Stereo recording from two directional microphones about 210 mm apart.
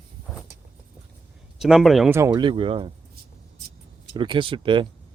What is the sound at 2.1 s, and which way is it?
Speech, 15° right (ahead or behind).